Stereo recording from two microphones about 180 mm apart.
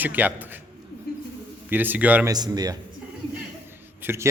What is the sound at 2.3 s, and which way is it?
Speech, 20° right (ahead or behind).